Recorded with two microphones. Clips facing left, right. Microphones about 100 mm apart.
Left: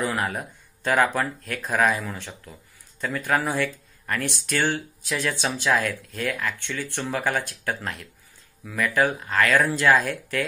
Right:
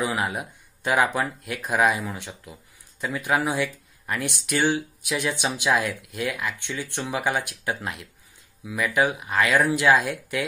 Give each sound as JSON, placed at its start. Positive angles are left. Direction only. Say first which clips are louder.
{"t": 0.0, "sound": "speech", "louder": "even", "side_deg": -15}